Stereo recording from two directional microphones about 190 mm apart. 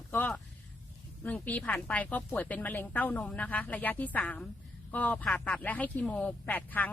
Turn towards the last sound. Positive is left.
turn(degrees=10)  # may be behind; listen again after turning